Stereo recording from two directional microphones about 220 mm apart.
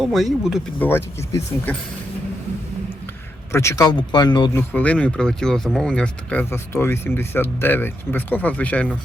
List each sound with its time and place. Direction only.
0.0 s speech: centre (ahead or behind)
0.9 s speech: 10° left (ahead or behind)
3.5 s speech: 10° left (ahead or behind)
4.5 s speech: 5° left (ahead or behind)